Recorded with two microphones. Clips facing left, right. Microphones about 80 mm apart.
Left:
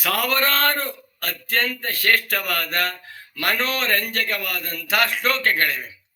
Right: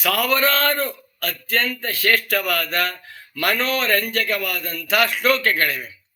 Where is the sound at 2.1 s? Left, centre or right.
Left.